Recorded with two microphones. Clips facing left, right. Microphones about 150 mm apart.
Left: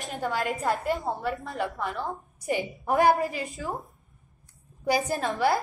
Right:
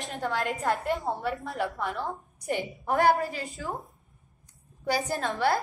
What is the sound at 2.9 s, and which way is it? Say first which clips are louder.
Speech: left 2 dB; 20° left (ahead or behind).